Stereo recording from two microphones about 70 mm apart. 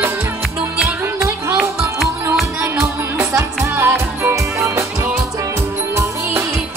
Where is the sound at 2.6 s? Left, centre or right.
Right.